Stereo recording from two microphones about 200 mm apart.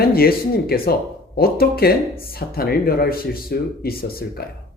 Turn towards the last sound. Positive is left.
turn(degrees=50)  # may be behind; listen again after turning